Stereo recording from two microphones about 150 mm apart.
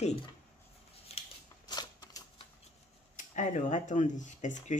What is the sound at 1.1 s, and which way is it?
Scissors, 40° left (ahead or behind).